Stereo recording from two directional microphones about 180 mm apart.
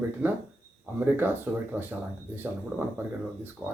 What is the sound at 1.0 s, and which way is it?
Speech, 10° right (ahead or behind).